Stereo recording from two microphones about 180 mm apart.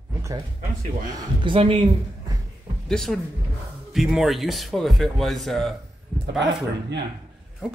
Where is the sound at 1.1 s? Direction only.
30° right (ahead or behind).